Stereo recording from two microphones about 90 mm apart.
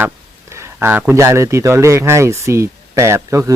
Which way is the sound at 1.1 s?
30° right (ahead or behind).